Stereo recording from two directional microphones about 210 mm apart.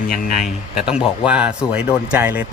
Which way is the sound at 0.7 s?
5° right (ahead or behind).